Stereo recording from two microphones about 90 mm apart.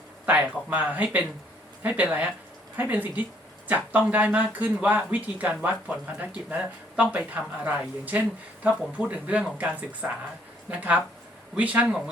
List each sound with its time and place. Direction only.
0.3 s speech: 15° right (ahead or behind)